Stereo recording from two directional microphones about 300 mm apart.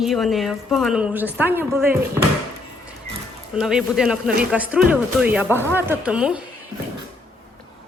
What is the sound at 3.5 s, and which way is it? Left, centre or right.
Speech, centre.